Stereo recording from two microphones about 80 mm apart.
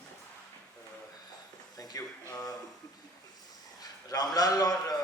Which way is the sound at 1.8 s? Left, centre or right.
Left.